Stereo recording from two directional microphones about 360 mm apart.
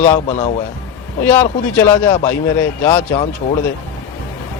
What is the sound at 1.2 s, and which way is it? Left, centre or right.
Speech, centre.